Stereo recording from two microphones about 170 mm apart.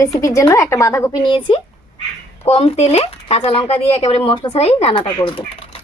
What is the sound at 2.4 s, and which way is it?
Speech, 40° left (ahead or behind).